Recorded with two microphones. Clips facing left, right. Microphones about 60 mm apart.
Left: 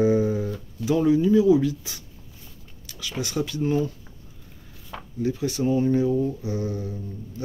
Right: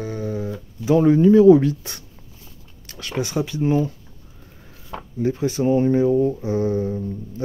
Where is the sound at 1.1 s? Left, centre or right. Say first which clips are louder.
Right 7 dB; right.